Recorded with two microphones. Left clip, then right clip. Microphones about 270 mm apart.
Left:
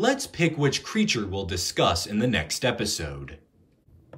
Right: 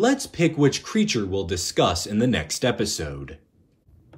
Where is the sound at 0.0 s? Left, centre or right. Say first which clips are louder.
Right 3 dB; centre.